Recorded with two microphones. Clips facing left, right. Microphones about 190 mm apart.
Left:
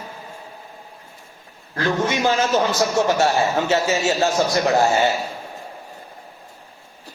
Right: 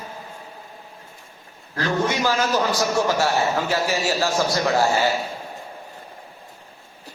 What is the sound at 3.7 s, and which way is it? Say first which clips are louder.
Speech: left 3 dB; 25° left (ahead or behind).